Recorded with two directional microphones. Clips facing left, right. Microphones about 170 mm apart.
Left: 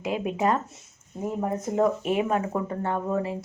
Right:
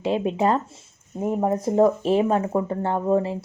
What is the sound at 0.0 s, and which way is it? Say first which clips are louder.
A woman's voice: right 4 dB; 30° right (ahead or behind).